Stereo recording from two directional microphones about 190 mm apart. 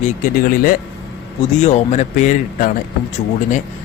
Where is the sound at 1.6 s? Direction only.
35° left (ahead or behind).